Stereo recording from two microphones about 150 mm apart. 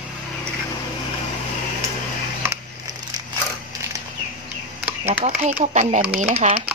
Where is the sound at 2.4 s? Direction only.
15° right (ahead or behind).